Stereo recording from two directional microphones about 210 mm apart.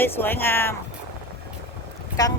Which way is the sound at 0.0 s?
10° left (ahead or behind).